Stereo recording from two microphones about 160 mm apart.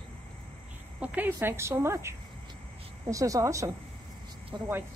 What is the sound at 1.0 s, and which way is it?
A woman's voice, 10° right (ahead or behind).